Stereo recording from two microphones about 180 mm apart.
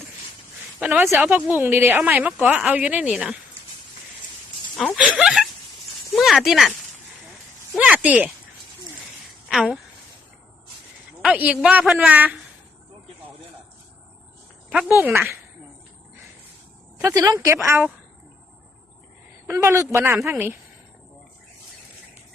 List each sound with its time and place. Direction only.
0.8 s a woman's voice: 10° right (ahead or behind)
5.0 s speech: centre (ahead or behind)
7.8 s speech: 10° right (ahead or behind)
9.5 s speech: 5° right (ahead or behind)
11.2 s a woman's voice: 5° right (ahead or behind)
14.7 s a woman's voice: 5° right (ahead or behind)
17.0 s a woman's voice: 20° right (ahead or behind)
19.5 s a woman's voice: 15° right (ahead or behind)